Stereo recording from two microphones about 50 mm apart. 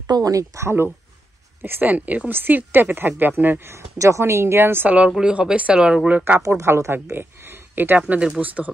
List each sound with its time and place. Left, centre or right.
0.3 s speech: right
1.6 s speech: right
2.3 s speech: right
3.6 s speech: right
4.8 s speech: right
6.0 s speech: right
6.4 s speech: right
7.2 s a sound: right
8.4 s speech: right